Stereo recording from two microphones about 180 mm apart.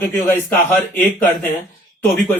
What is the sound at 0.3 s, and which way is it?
Speech, 10° left (ahead or behind).